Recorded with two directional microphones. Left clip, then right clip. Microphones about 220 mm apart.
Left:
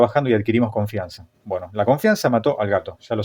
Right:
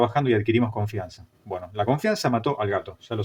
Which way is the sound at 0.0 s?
35° left (ahead or behind).